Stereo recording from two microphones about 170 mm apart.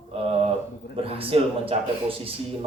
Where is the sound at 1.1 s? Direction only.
35° right (ahead or behind).